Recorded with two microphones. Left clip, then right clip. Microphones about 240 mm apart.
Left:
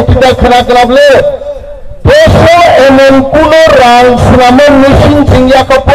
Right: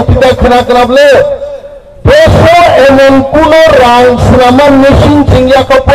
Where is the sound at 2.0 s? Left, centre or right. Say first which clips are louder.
Even; left.